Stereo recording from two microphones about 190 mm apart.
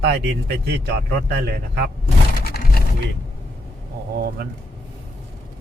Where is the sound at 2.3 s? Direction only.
50° left (ahead or behind).